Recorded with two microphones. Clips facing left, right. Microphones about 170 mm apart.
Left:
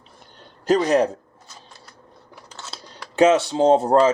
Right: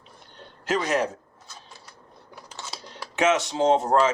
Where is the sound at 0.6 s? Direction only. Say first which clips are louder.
Left 7 dB; 35° left (ahead or behind).